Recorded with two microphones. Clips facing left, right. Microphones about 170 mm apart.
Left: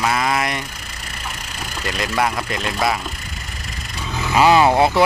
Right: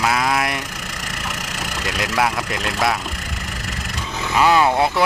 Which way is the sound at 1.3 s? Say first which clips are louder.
Right 2 dB; 80° right.